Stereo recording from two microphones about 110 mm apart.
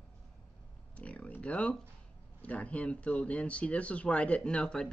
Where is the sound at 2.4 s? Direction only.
10° left (ahead or behind).